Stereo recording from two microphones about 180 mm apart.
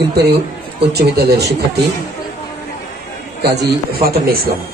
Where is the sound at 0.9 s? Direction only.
65° right (ahead or behind).